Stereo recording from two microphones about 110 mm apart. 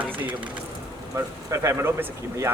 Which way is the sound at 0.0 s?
15° right (ahead or behind).